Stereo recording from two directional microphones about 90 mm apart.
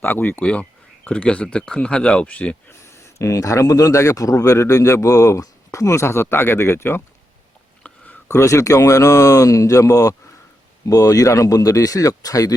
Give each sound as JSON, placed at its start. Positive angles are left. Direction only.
{"t": 0.0, "sound": "speech", "side_deg": 20}
{"t": 2.8, "sound": "speech", "side_deg": 35}
{"t": 7.9, "sound": "a sound", "side_deg": 20}
{"t": 8.3, "sound": "speech", "side_deg": 35}